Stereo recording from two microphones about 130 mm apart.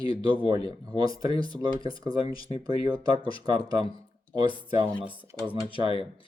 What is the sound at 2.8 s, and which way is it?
Speech, 35° right (ahead or behind).